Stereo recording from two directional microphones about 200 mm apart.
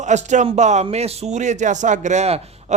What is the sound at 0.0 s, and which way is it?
Speech, 35° right (ahead or behind).